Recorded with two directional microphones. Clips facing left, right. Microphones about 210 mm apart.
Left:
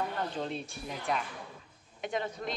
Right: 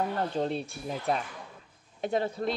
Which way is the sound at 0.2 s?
35° right (ahead or behind).